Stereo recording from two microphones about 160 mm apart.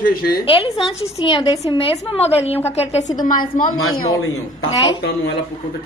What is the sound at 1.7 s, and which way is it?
A woman's voice, 35° left (ahead or behind).